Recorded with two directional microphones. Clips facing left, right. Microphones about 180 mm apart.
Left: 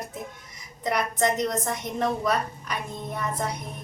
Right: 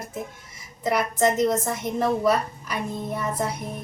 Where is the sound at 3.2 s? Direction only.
5° right (ahead or behind).